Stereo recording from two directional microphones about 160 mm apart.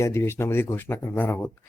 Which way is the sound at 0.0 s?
15° left (ahead or behind).